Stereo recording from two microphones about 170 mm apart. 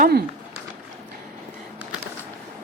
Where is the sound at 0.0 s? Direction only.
65° right (ahead or behind).